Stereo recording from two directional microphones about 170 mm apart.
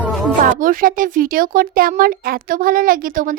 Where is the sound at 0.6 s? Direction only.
55° right (ahead or behind).